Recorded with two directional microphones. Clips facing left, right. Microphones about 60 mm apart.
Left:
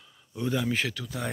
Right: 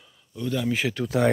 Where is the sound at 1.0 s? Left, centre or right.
Right.